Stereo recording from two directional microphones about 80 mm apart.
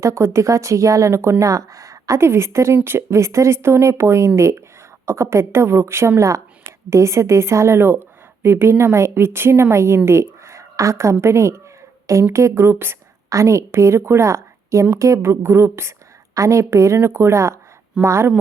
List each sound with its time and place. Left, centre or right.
0.0 s a woman's voice: right